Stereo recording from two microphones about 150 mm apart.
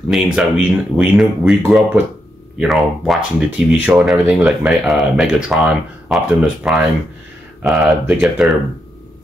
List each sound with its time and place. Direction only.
0.1 s speech: 5° right (ahead or behind)